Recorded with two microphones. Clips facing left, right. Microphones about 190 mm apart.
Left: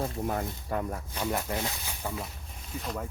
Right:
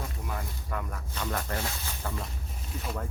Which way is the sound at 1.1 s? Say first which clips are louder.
Left 1 dB; 15° left (ahead or behind).